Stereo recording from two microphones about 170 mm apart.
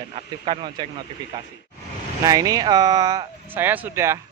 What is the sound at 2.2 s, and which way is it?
Speech, 20° right (ahead or behind).